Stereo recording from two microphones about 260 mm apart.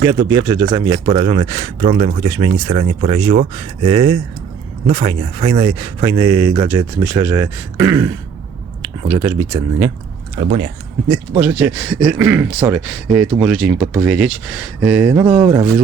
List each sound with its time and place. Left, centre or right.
0.3 s speech: centre
10.3 s speech: right
11.1 s speech: centre